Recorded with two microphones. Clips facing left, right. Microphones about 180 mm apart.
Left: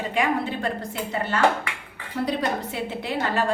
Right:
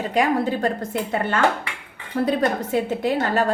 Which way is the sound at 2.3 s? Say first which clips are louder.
Right 5 dB; 45° right (ahead or behind).